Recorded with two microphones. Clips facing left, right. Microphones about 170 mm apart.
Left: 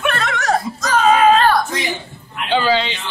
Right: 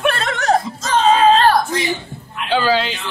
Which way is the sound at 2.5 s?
5° right (ahead or behind).